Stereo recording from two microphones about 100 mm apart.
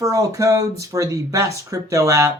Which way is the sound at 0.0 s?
35° right (ahead or behind).